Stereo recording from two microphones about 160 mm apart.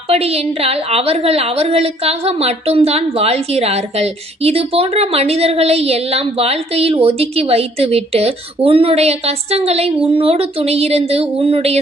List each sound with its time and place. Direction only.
0.1 s a woman's voice: 40° right (ahead or behind)